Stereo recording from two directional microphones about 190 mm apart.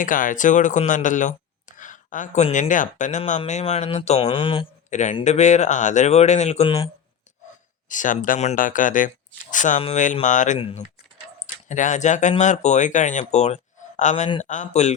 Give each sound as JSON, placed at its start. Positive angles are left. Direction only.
{"t": 0.0, "sound": "speech", "side_deg": 45}
{"t": 4.9, "sound": "a man's voice", "side_deg": 40}
{"t": 7.9, "sound": "speech", "side_deg": 40}
{"t": 10.6, "sound": "speech", "side_deg": 30}
{"t": 11.7, "sound": "speech", "side_deg": 40}